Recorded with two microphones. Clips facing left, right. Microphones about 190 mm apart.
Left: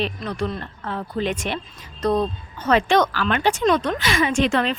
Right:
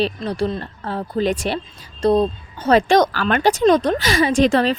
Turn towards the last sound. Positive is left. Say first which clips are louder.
# right 4 dB
turn(degrees=-35)  # may be behind; listen again after turning